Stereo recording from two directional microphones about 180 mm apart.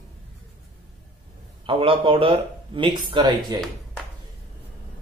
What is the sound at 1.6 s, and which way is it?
Speech, 30° right (ahead or behind).